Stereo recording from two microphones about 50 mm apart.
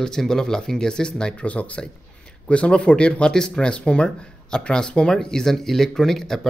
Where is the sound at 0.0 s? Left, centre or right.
Centre.